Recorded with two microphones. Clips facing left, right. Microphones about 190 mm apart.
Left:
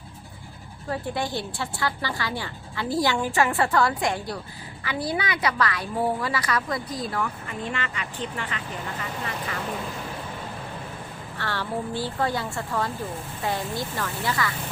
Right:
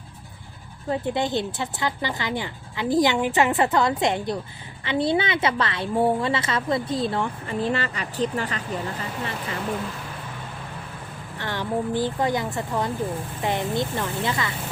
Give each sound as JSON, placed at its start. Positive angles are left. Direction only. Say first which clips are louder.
{"t": 0.9, "sound": "a woman's voice", "louder": "right 4 dB", "side_deg": -20}
{"t": 11.3, "sound": "a woman's voice", "louder": "right 3 dB", "side_deg": -20}